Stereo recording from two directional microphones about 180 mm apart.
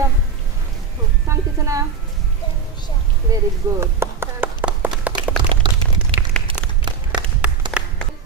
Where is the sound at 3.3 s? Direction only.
15° right (ahead or behind).